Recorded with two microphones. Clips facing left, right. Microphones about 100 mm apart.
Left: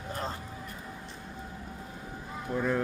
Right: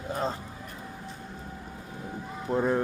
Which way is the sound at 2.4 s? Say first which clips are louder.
Right 4 dB; 25° right (ahead or behind).